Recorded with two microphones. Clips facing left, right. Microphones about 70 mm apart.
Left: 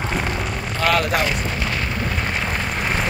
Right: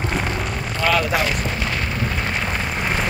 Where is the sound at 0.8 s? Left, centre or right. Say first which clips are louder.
Even; left.